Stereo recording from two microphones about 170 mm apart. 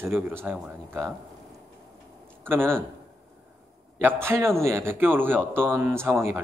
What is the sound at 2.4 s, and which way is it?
Speech, 15° right (ahead or behind).